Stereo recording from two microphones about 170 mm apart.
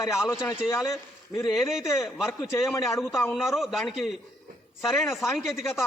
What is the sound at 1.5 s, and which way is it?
Speech, centre (ahead or behind).